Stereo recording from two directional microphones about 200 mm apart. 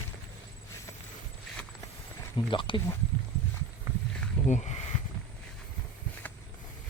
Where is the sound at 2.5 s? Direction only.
25° left (ahead or behind).